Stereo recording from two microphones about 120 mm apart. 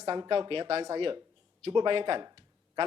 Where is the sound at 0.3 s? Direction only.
50° right (ahead or behind).